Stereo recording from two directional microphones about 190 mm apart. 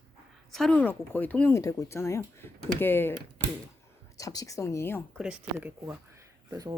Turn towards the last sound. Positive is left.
turn(degrees=-20)  # may be behind; listen again after turning